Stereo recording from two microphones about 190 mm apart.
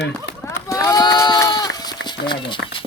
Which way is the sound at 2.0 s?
25° left (ahead or behind).